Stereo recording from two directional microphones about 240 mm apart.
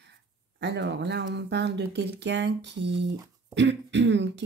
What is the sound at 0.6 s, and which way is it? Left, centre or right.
Speech, right.